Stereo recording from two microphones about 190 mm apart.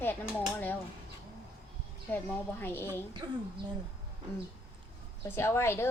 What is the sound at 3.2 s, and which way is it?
Speech, 25° right (ahead or behind).